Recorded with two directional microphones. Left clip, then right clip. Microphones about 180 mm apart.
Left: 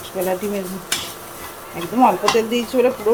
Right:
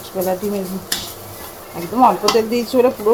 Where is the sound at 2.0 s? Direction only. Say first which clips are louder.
Right 2 dB; 5° left (ahead or behind).